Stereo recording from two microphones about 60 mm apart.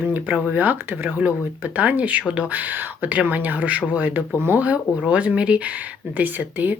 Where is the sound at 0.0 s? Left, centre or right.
Right.